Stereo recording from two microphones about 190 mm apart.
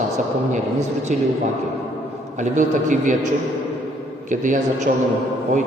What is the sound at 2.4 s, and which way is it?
Speech, 40° right (ahead or behind).